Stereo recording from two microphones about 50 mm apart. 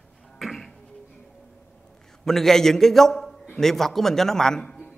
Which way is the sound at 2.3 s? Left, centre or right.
Centre.